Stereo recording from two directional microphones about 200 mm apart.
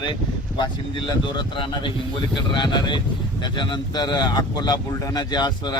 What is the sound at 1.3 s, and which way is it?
Speech, 25° left (ahead or behind).